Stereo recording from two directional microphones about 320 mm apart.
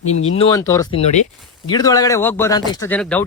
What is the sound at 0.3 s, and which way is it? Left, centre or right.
Speech, centre.